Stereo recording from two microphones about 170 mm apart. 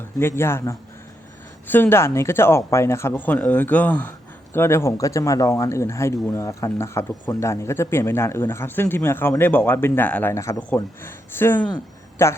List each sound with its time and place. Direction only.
0.2 s speech: 15° left (ahead or behind)